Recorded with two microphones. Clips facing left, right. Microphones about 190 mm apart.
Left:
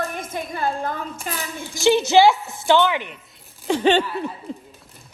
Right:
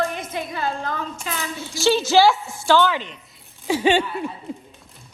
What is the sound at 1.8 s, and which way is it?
A woman's voice, 20° left (ahead or behind).